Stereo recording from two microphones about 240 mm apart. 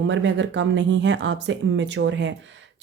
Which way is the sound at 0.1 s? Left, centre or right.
Right.